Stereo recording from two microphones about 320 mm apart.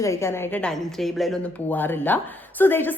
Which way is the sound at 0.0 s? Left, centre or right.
Centre.